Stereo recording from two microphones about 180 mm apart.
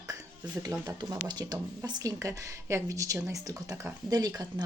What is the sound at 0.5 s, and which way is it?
Speech, 20° right (ahead or behind).